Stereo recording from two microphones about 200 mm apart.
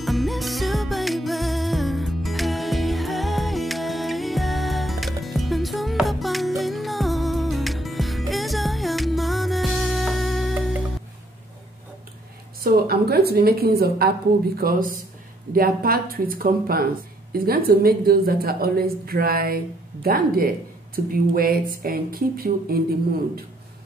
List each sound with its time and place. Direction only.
0.0 s music: centre (ahead or behind)
12.6 s a woman's voice: 50° right (ahead or behind)